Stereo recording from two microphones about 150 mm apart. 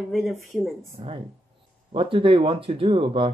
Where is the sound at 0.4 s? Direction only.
Centre (ahead or behind).